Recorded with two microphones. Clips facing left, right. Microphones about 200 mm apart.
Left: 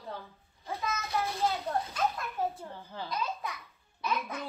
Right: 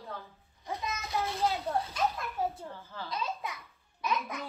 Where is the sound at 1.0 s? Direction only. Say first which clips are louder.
Even; centre (ahead or behind).